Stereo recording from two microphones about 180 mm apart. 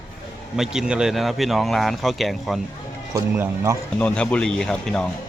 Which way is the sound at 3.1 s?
15° right (ahead or behind).